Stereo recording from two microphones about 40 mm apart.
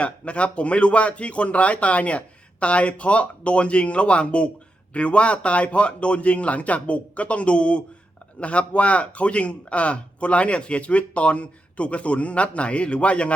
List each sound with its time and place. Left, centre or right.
0.0 s speech: left